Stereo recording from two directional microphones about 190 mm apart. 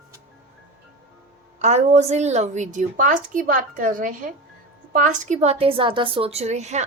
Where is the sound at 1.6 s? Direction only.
35° right (ahead or behind).